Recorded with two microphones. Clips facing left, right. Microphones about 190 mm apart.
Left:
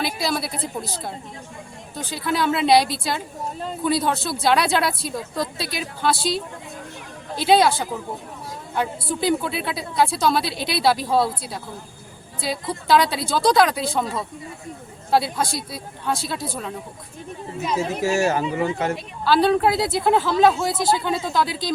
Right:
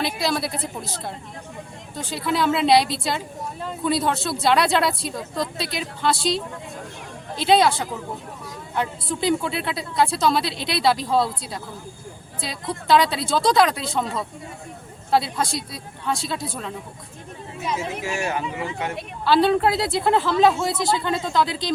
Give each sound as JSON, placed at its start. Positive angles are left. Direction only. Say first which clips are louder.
{"t": 0.0, "sound": "speech", "louder": "right 1 dB", "side_deg": 0}
{"t": 2.2, "sound": "speech", "louder": "even", "side_deg": 0}
{"t": 7.4, "sound": "speech", "louder": "left 1 dB", "side_deg": 0}
{"t": 17.7, "sound": "speech", "louder": "left 5 dB", "side_deg": 35}
{"t": 19.2, "sound": "speech", "louder": "even", "side_deg": 0}